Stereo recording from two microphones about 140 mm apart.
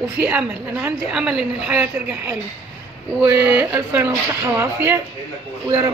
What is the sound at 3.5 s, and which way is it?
A woman's voice, 10° right (ahead or behind).